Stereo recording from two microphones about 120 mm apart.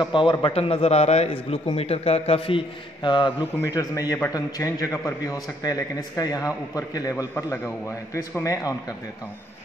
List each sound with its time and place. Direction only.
0.0 s a man's voice: 40° left (ahead or behind)
3.5 s a man's voice: 25° left (ahead or behind)